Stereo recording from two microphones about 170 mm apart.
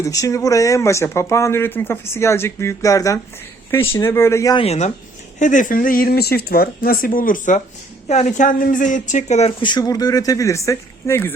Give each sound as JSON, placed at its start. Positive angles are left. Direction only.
{"t": 0.0, "sound": "speech", "side_deg": 20}
{"t": 4.5, "sound": "speech", "side_deg": 35}
{"t": 5.4, "sound": "speech", "side_deg": 50}
{"t": 9.6, "sound": "speech", "side_deg": 25}